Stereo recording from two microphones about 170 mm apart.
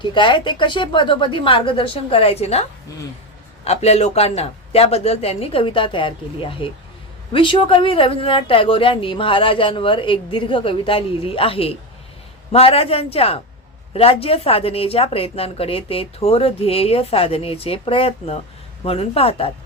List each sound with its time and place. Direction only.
0.0 s a woman's voice: 30° left (ahead or behind)